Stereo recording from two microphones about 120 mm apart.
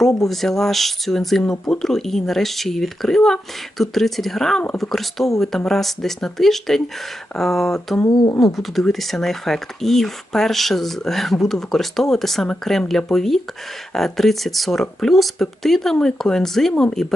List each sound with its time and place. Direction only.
0.3 s speech: 5° left (ahead or behind)
8.1 s speech: 35° left (ahead or behind)
8.5 s speech: centre (ahead or behind)